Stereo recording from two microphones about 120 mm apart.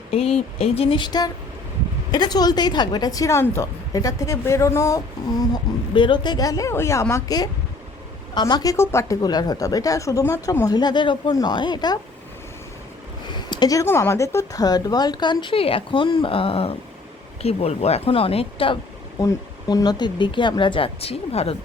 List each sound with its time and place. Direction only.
0.1 s a woman's voice: 60° left (ahead or behind); by 5.5 s 30° left (ahead or behind)
5.9 s a woman's voice: 45° left (ahead or behind)
8.7 s a woman's voice: 20° left (ahead or behind)
10.8 s speech: 40° left (ahead or behind)
13.3 s a sound: 35° left (ahead or behind)
13.8 s speech: 20° left (ahead or behind); by 18.8 s 50° left (ahead or behind)
19.2 s speech: 35° left (ahead or behind); by 21.5 s 55° left (ahead or behind)